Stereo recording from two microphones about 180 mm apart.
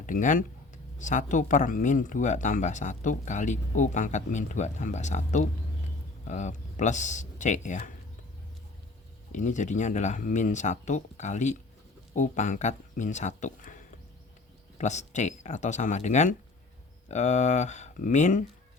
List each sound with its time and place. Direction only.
0.0 s speech: 45° left (ahead or behind)
9.3 s speech: 40° left (ahead or behind)